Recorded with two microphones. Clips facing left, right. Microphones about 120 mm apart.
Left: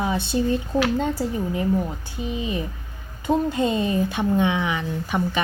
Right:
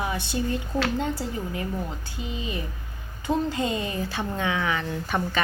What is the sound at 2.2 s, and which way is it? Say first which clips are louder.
A woman's voice: left 6 dB; 20° left (ahead or behind).